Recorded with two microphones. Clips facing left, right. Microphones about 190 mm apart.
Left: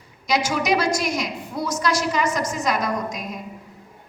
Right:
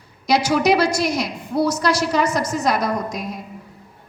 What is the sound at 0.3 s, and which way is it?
A woman's voice, 35° right (ahead or behind).